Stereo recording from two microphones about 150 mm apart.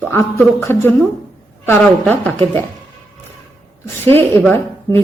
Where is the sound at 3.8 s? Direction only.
15° left (ahead or behind).